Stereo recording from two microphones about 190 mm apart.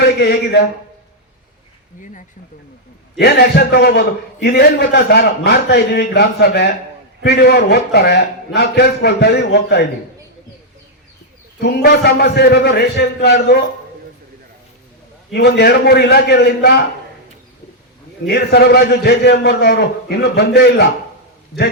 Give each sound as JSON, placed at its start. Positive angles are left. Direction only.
{"t": 0.0, "sound": "a man's voice", "side_deg": 60}
{"t": 3.2, "sound": "a man's voice", "side_deg": 55}
{"t": 11.6, "sound": "a man's voice", "side_deg": 55}
{"t": 15.3, "sound": "a man's voice", "side_deg": 60}
{"t": 18.3, "sound": "a man's voice", "side_deg": 60}